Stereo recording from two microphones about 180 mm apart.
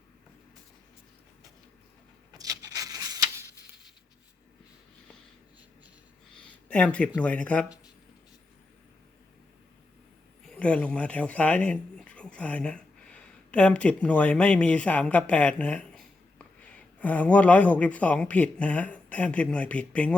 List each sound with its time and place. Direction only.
2.4 s a sound: 20° right (ahead or behind)
6.7 s speech: 5° left (ahead or behind)
10.4 s speech: 5° left (ahead or behind)